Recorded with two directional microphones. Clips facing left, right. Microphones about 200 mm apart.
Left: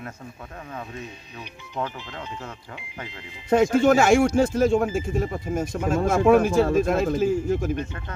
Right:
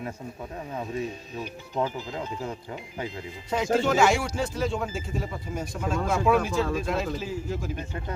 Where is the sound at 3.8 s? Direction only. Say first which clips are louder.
Left 6 dB; 50° left (ahead or behind).